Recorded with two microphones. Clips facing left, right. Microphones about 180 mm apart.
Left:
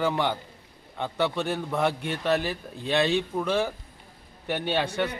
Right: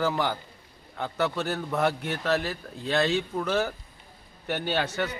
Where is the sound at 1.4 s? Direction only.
Centre (ahead or behind).